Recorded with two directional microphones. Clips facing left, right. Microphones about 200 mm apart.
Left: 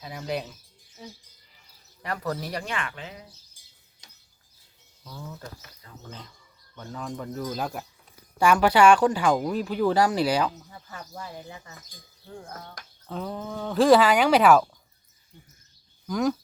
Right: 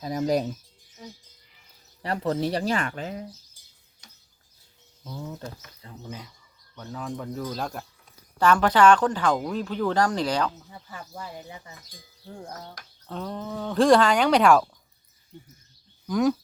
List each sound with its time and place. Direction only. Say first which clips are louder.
0.0 s speech: right 7 dB; 40° right (ahead or behind)
2.0 s speech: right 5 dB; 30° right (ahead or behind)
5.1 s speech: right 4 dB; 20° right (ahead or behind)
6.7 s speech: right 1 dB; 5° right (ahead or behind)
13.1 s speech: even; 5° left (ahead or behind)
16.0 s speech: right 3 dB; centre (ahead or behind)